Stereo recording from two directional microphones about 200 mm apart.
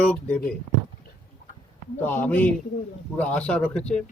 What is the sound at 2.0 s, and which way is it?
Speech, 10° left (ahead or behind).